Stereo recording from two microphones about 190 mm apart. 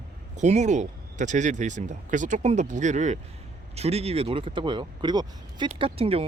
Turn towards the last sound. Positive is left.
turn(degrees=-30)  # may be behind; listen again after turning